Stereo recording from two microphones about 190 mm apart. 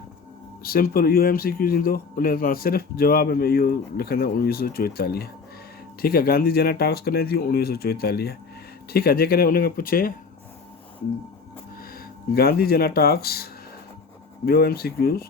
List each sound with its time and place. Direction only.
0.6 s speech: 50° left (ahead or behind)
11.8 s speech: 50° left (ahead or behind)